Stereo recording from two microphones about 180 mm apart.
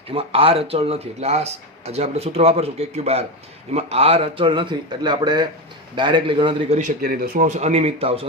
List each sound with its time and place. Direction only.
0.1 s a man's voice: 30° right (ahead or behind)
7.0 s speech: 55° right (ahead or behind); by 8.3 s 30° right (ahead or behind)